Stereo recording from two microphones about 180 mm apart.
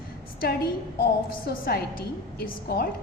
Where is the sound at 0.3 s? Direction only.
60° left (ahead or behind).